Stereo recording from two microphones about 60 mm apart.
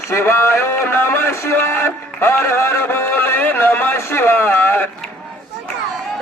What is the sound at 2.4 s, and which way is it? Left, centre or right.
A man's voice, left.